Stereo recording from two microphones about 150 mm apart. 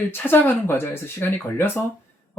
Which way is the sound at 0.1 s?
15° left (ahead or behind).